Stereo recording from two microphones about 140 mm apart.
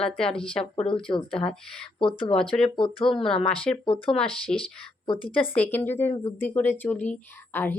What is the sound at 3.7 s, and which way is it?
Speech, 5° left (ahead or behind).